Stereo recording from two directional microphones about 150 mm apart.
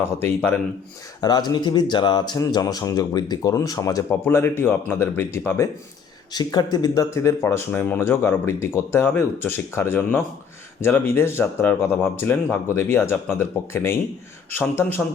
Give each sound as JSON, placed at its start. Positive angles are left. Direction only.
{"t": 0.2, "sound": "speech", "side_deg": 15}
{"t": 1.2, "sound": "speech", "side_deg": 25}
{"t": 6.3, "sound": "speech", "side_deg": 30}